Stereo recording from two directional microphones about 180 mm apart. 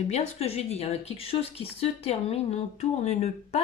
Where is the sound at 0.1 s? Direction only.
35° left (ahead or behind).